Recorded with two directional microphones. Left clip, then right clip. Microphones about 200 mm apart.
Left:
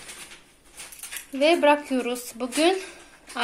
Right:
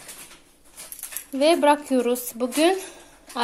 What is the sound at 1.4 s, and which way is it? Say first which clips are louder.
Speech: right 1 dB; 15° right (ahead or behind).